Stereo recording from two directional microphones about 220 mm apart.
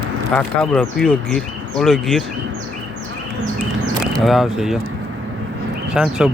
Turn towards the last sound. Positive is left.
turn(degrees=-5)  # may be behind; listen again after turning